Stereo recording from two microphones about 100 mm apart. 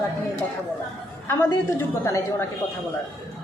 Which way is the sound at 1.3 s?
25° left (ahead or behind).